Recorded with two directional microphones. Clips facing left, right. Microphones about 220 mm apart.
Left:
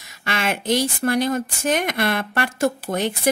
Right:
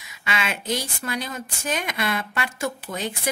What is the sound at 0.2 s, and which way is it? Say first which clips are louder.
Speech: left 4 dB; 50° left (ahead or behind).